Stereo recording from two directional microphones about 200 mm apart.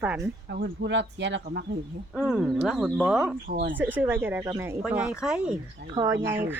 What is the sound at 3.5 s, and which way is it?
Speech, 45° right (ahead or behind).